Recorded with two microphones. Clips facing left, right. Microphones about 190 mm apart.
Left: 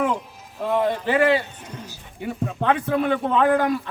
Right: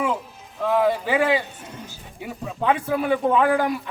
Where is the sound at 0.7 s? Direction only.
5° right (ahead or behind).